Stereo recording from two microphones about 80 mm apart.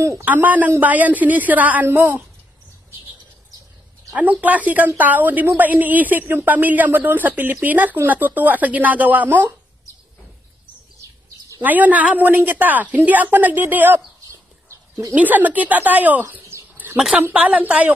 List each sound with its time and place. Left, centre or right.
0.2 s a woman's voice: right
4.1 s a woman's voice: centre
11.6 s a woman's voice: right
14.3 s a sound: right
15.1 s a woman's voice: right
16.7 s a sound: right
17.2 s a woman's voice: centre